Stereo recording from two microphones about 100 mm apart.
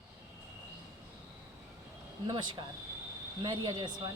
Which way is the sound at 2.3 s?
45° right (ahead or behind).